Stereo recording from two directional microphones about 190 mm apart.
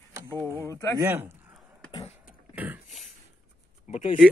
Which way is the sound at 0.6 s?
15° left (ahead or behind).